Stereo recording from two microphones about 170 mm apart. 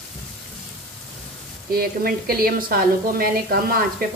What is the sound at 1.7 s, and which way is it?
Speech, 60° right (ahead or behind).